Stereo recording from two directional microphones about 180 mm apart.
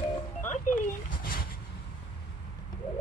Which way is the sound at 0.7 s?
45° left (ahead or behind).